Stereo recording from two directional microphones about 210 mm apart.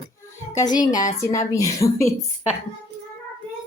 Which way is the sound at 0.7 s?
20° left (ahead or behind).